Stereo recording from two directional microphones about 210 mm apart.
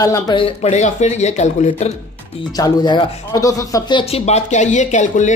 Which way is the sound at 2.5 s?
20° left (ahead or behind).